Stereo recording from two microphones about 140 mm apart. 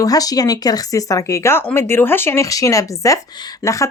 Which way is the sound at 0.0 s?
25° left (ahead or behind).